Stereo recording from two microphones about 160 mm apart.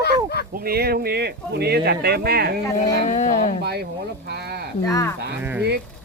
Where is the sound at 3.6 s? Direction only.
90° right.